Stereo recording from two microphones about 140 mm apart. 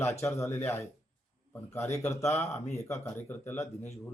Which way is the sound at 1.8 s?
50° left (ahead or behind).